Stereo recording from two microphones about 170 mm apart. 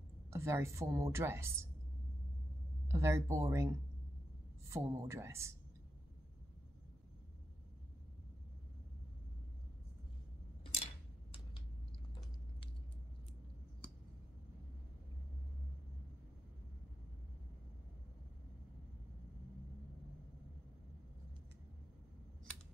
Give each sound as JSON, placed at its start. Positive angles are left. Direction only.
{"t": 0.3, "sound": "a woman's voice", "side_deg": -15}
{"t": 2.9, "sound": "a woman's voice", "side_deg": -15}